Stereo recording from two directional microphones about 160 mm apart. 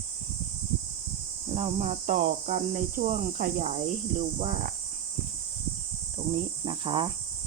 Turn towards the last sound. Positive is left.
turn(degrees=-35)  # may be behind; listen again after turning